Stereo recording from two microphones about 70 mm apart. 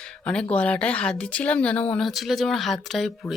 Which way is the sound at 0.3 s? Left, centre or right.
Centre.